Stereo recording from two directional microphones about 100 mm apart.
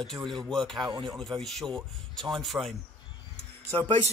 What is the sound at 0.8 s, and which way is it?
Speech, 40° right (ahead or behind).